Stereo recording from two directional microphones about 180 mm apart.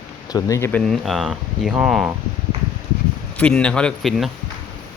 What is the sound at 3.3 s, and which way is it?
Speech, 5° left (ahead or behind).